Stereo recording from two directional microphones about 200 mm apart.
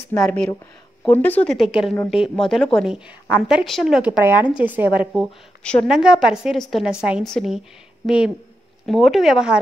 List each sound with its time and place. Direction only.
0.2 s a woman's voice: 5° left (ahead or behind)
8.8 s a woman's voice: centre (ahead or behind)